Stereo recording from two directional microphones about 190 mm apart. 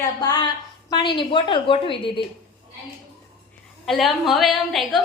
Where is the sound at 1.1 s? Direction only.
25° left (ahead or behind).